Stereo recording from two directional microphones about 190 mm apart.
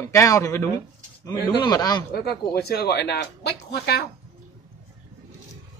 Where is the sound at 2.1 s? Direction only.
55° left (ahead or behind).